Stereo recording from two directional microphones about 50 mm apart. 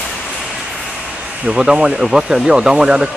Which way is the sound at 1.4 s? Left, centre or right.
Centre.